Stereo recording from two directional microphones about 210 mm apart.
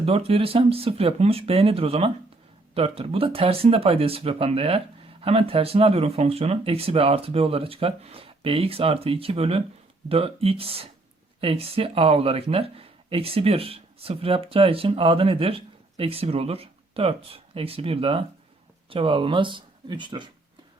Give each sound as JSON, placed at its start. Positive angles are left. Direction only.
{"t": 0.0, "sound": "speech", "side_deg": -30}